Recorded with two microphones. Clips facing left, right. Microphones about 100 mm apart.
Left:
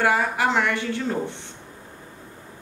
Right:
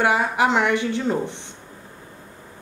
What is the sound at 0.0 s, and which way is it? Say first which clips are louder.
A woman's voice: right 2 dB; 20° right (ahead or behind).